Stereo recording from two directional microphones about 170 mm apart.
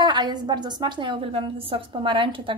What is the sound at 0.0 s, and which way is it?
A woman's voice, 25° right (ahead or behind).